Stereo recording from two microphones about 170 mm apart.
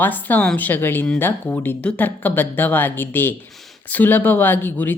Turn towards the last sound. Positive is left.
turn(degrees=10)  # may be behind; listen again after turning